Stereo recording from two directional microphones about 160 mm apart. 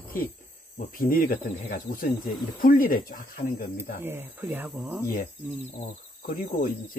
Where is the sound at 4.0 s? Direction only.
15° right (ahead or behind).